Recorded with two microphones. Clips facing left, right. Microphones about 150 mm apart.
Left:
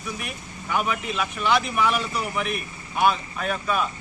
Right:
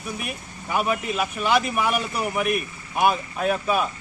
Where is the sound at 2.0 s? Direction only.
50° right (ahead or behind).